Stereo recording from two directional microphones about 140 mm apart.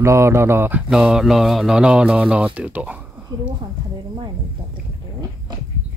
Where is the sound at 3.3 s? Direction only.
30° right (ahead or behind).